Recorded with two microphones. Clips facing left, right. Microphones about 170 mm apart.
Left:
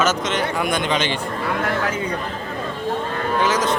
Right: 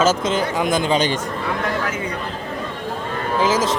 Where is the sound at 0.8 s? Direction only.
35° right (ahead or behind).